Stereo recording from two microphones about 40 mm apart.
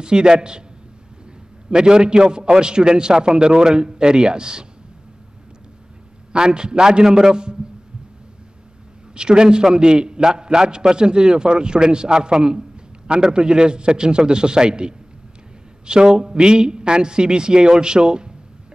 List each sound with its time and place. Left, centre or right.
0.0 s a man's voice: centre
1.7 s a man's voice: centre
6.3 s a man's voice: right
9.1 s a man's voice: right